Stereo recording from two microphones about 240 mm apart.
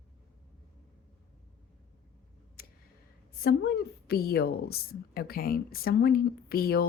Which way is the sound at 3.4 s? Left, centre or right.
Left.